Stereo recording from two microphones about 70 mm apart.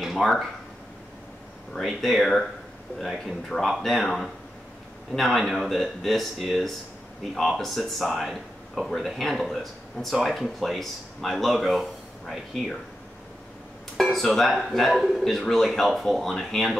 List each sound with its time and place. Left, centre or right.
0.0 s speech: centre
1.7 s speech: centre
13.9 s speech: centre